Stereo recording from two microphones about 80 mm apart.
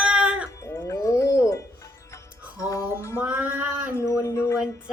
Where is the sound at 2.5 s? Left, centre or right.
Left.